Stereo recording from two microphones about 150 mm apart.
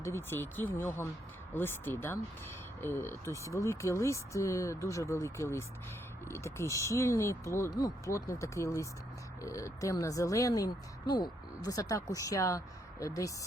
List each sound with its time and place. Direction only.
0.0 s speech: 15° left (ahead or behind)